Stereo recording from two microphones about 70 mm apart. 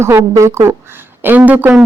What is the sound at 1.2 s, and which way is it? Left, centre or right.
Speech, right.